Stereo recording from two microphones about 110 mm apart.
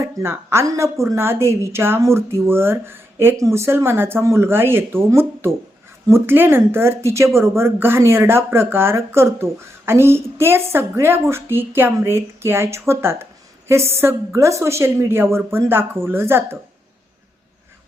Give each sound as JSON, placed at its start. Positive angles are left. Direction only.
{"t": 0.0, "sound": "speech", "side_deg": -25}